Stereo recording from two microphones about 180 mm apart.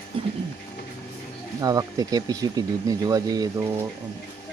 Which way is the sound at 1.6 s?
20° right (ahead or behind).